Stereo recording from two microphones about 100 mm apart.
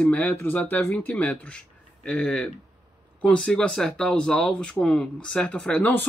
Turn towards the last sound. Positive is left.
turn(degrees=15)  # may be behind; listen again after turning